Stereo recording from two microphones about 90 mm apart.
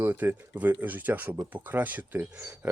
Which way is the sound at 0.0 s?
20° right (ahead or behind).